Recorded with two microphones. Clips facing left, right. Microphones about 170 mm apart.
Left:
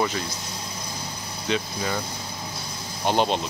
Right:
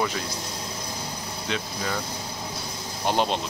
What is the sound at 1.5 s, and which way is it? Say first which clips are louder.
Speech: left 5 dB; centre (ahead or behind).